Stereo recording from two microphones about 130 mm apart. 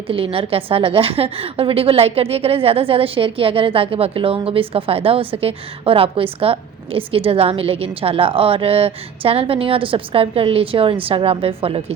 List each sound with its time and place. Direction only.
0.1 s a woman's voice: 45° right (ahead or behind)